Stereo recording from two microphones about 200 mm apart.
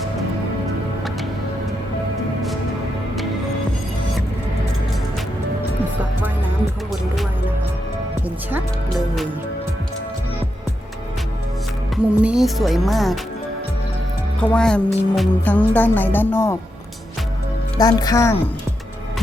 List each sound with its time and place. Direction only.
8.4 s speech: 5° right (ahead or behind)
12.2 s speech: 5° right (ahead or behind)
14.3 s speech: 5° left (ahead or behind)
17.7 s speech: 20° left (ahead or behind)